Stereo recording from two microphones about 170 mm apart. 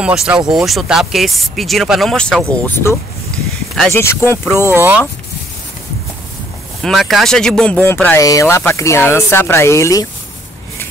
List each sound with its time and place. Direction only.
0.0 s speech: 5° right (ahead or behind); by 4.6 s 15° left (ahead or behind)
4.6 s speech: 15° right (ahead or behind)
6.8 s speech: centre (ahead or behind); by 10.0 s 20° left (ahead or behind)